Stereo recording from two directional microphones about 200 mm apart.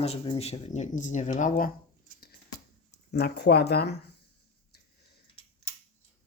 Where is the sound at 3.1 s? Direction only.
55° left (ahead or behind).